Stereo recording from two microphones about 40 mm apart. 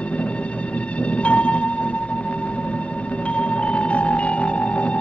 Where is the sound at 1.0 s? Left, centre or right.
Left.